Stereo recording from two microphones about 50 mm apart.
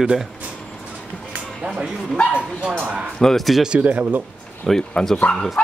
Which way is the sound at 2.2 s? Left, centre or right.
Left.